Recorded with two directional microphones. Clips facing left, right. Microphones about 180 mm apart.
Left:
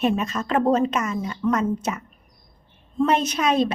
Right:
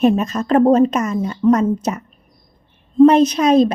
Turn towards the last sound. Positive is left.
turn(degrees=-40)  # may be behind; listen again after turning